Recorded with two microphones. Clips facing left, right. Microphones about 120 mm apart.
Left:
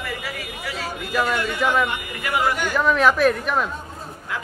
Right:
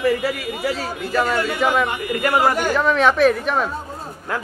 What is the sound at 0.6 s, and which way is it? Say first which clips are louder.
Speech: right 7 dB; 35° right (ahead or behind).